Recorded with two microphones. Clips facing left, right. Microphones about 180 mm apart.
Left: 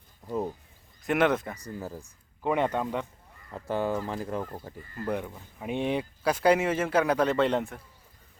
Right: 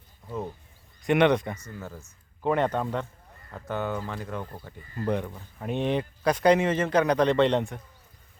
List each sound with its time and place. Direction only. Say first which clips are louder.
1.0 s speech: right 3 dB; centre (ahead or behind)
1.8 s speech: left 2 dB; 35° left (ahead or behind)
2.4 s speech: right 2 dB; 10° left (ahead or behind)
3.7 s speech: left 2 dB; 30° left (ahead or behind)
4.9 s speech: right 3 dB; 5° left (ahead or behind)